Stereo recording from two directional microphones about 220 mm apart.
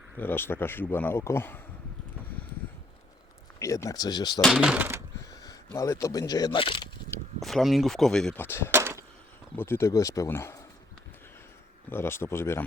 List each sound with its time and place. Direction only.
0.2 s speech: 10° left (ahead or behind)
3.6 s speech: 15° left (ahead or behind)
4.4 s speech: centre (ahead or behind)
5.3 s a sound: 15° left (ahead or behind)
5.7 s speech: 15° left (ahead or behind)
7.1 s speech: centre (ahead or behind)
8.7 s a sound: 10° right (ahead or behind)
9.6 s speech: 10° left (ahead or behind)
11.9 s speech: 10° left (ahead or behind)